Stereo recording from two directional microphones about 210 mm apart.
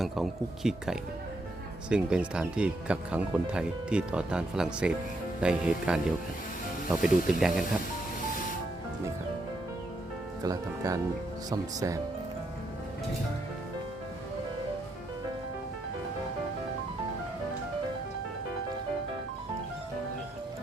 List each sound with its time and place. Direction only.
0.0 s speech: centre (ahead or behind)
10.4 s speech: 15° right (ahead or behind)